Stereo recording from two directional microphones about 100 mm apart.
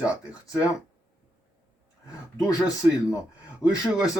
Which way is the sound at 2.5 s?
35° left (ahead or behind).